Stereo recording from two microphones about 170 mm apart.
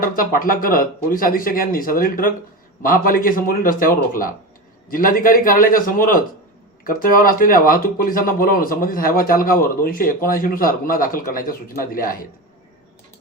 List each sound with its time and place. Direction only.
0.0 s speech: 55° left (ahead or behind)